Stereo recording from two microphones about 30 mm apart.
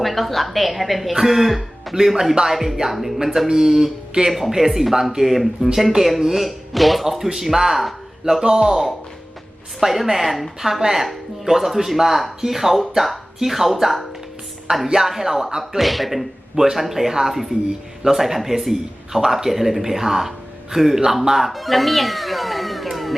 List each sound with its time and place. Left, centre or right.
0.0 s speech: centre
8.4 s speech: right
9.8 s speech: centre
15.8 s speech: centre